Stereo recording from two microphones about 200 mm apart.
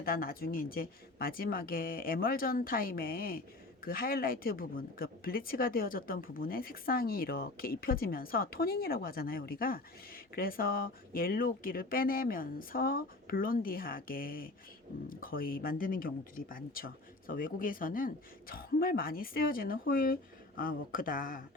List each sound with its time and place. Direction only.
0.0 s speech: 45° left (ahead or behind)